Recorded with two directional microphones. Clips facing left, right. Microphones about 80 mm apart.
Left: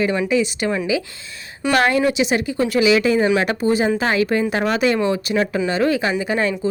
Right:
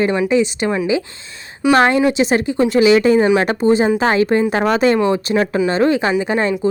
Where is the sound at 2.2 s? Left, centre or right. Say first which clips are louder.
Right 4 dB; right.